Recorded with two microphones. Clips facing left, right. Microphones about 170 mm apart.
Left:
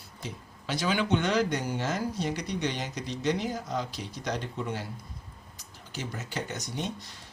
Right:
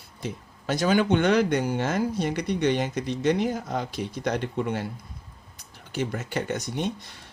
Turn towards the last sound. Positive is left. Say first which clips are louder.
# right 6 dB
turn(degrees=-55)  # may be behind; listen again after turning